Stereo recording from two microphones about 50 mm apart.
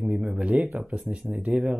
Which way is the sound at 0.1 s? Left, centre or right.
Centre.